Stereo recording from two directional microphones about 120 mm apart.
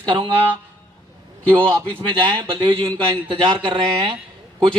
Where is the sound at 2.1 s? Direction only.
45° right (ahead or behind).